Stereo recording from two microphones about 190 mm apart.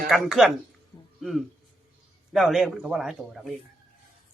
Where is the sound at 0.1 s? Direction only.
Centre (ahead or behind).